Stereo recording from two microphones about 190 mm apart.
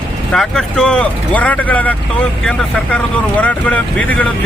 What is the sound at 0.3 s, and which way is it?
A man's voice, 5° left (ahead or behind).